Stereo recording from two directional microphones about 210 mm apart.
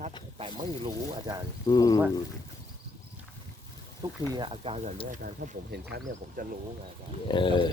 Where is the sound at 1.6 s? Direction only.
15° left (ahead or behind).